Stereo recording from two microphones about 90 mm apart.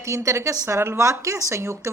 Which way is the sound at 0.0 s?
35° right (ahead or behind).